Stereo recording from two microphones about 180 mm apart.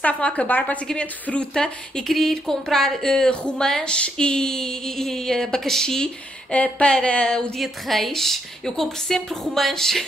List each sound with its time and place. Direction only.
0.0 s speech: 10° left (ahead or behind)